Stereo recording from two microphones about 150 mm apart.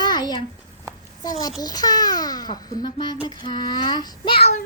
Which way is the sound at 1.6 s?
25° left (ahead or behind).